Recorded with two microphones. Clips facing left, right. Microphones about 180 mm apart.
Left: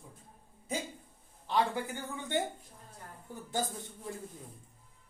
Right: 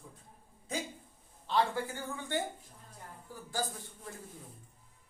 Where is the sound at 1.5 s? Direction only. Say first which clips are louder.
Even; 15° left (ahead or behind).